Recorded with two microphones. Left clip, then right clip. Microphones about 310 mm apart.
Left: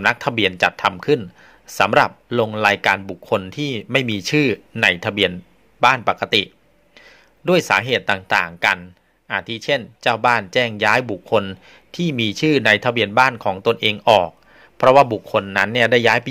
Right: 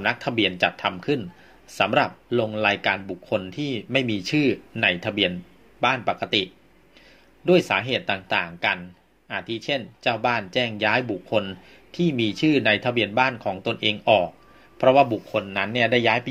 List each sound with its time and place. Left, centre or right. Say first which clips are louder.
0.0 s speech: left 5 dB; left